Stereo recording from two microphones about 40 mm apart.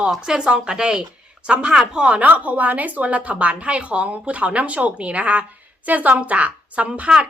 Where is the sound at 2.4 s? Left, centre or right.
Right.